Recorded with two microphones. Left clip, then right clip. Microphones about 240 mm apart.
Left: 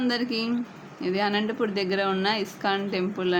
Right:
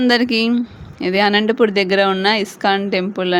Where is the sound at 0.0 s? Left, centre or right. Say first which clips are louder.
Right 12 dB; right.